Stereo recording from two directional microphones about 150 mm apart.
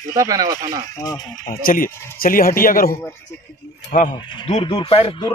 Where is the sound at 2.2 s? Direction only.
75° left (ahead or behind).